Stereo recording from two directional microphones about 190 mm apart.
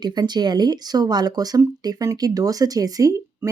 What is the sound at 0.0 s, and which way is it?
Speech, 20° right (ahead or behind).